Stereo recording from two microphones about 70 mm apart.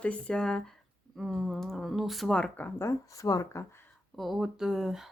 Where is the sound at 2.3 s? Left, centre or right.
Centre.